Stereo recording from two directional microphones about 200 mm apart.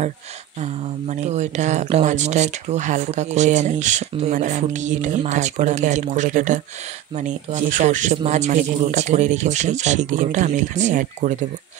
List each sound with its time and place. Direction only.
0.6 s speech: 35° right (ahead or behind)